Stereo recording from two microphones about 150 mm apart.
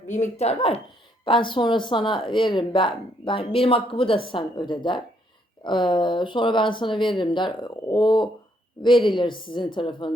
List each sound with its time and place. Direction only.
0.1 s speech: 50° left (ahead or behind)
1.2 s speech: 35° left (ahead or behind)